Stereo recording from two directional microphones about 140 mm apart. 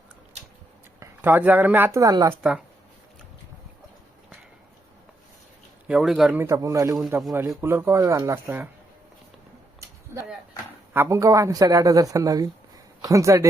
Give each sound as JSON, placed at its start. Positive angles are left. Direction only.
{"t": 0.9, "sound": "speech", "side_deg": -15}
{"t": 5.9, "sound": "speech", "side_deg": -5}
{"t": 6.3, "sound": "speech", "side_deg": -20}
{"t": 10.1, "sound": "a sound", "side_deg": -15}
{"t": 10.9, "sound": "speech", "side_deg": -20}